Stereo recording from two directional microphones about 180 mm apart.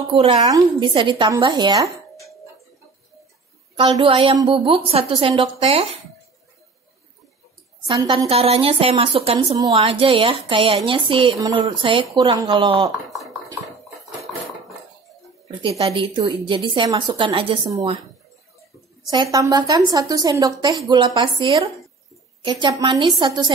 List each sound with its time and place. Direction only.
0.4 s a woman's voice: 20° right (ahead or behind)
3.9 s a woman's voice: 30° right (ahead or behind)
7.8 s a woman's voice: 20° right (ahead or behind)
8.3 s a woman's voice: 30° right (ahead or behind)
12.9 s speech: centre (ahead or behind)
14.2 s a sound: centre (ahead or behind)
15.8 s a woman's voice: 30° right (ahead or behind)
19.3 s a woman's voice: 20° right (ahead or behind)